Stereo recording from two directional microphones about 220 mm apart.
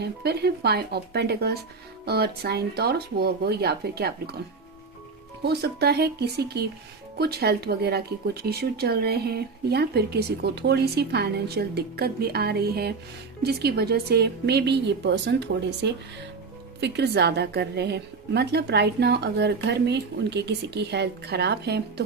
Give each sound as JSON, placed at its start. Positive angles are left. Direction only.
{"t": 0.0, "sound": "speech", "side_deg": -45}
{"t": 5.4, "sound": "speech", "side_deg": -50}